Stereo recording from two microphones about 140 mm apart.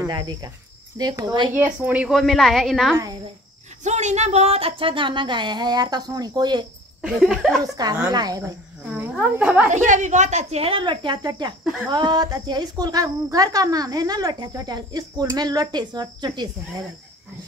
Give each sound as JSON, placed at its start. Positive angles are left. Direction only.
{"t": 0.0, "sound": "cricket", "side_deg": -30}
{"t": 0.9, "sound": "speech", "side_deg": -30}
{"t": 1.5, "sound": "a woman's voice", "side_deg": -10}
{"t": 3.8, "sound": "speech", "side_deg": -55}
{"t": 7.0, "sound": "a woman's voice", "side_deg": 0}
{"t": 7.6, "sound": "speech", "side_deg": -30}
{"t": 9.4, "sound": "speech", "side_deg": -10}
{"t": 9.7, "sound": "speech", "side_deg": -60}